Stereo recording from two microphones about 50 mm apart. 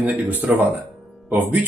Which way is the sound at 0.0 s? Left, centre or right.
Right.